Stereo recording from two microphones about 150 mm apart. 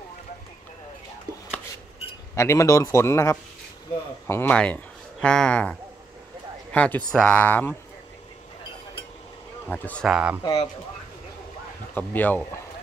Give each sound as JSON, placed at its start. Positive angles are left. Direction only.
{"t": 2.3, "sound": "a man's voice", "side_deg": 20}
{"t": 9.7, "sound": "speech", "side_deg": 10}
{"t": 10.0, "sound": "speech", "side_deg": -5}
{"t": 11.9, "sound": "speech", "side_deg": 10}